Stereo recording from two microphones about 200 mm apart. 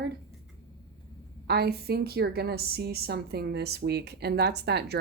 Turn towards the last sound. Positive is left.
turn(degrees=-55)  # may be behind; listen again after turning